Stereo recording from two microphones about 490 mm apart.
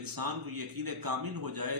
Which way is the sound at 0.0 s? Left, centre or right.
Right.